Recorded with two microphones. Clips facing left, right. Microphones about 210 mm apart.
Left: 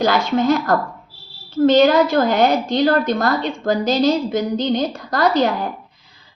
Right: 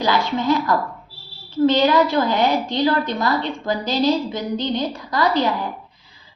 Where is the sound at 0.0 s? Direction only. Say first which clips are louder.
Left 4 dB; 45° left (ahead or behind).